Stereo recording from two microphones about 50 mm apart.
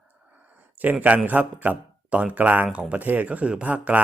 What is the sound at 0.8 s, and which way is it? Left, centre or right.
Speech, right.